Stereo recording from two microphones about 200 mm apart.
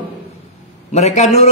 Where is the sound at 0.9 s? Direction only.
35° left (ahead or behind).